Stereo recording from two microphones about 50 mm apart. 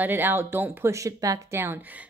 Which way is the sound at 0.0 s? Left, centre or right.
Right.